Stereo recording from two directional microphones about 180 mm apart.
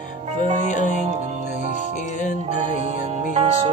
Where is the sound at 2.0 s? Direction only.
40° left (ahead or behind).